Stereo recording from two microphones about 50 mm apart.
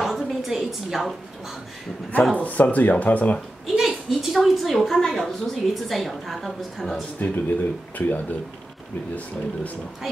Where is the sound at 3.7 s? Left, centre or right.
Centre.